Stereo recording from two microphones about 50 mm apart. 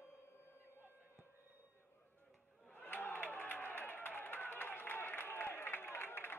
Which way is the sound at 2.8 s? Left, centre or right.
Left.